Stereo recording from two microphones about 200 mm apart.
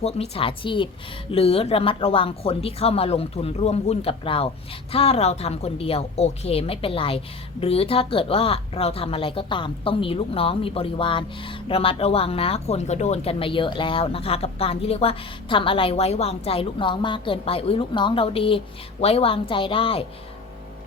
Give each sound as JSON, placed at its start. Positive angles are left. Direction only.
{"t": 0.0, "sound": "a woman's voice", "side_deg": 30}